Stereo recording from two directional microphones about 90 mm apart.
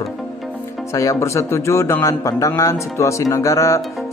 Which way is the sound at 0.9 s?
35° left (ahead or behind).